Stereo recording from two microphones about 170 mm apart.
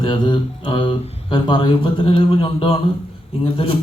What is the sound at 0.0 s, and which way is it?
A man's voice, 25° left (ahead or behind).